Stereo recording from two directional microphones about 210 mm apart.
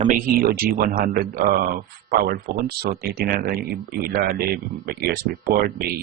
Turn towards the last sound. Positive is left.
turn(degrees=-45)  # may be behind; listen again after turning